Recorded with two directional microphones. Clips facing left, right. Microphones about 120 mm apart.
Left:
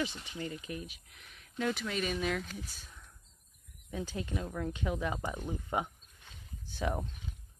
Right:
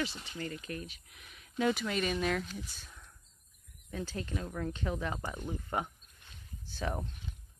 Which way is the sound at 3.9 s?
15° left (ahead or behind).